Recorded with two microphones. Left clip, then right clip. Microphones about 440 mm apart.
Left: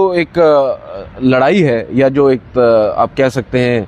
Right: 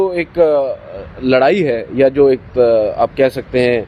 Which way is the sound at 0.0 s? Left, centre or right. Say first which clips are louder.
Left 3 dB; left.